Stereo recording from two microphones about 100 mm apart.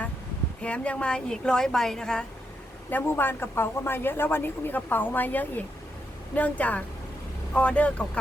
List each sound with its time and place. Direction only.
0.6 s a woman's voice: 10° left (ahead or behind)
2.9 s a woman's voice: 20° left (ahead or behind)